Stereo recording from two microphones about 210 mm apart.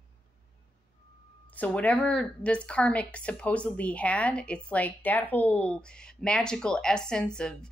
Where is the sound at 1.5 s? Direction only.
5° left (ahead or behind).